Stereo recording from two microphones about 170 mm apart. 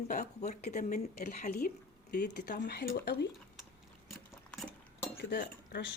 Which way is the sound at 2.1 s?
75° left (ahead or behind).